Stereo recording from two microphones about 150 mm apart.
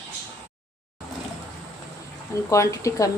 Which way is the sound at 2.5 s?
20° left (ahead or behind).